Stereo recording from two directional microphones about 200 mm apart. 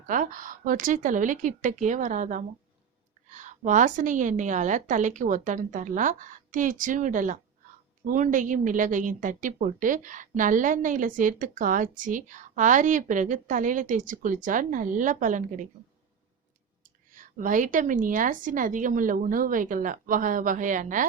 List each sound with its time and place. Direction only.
0.1 s a woman's voice: 40° right (ahead or behind)
17.1 s a woman's voice: 40° right (ahead or behind)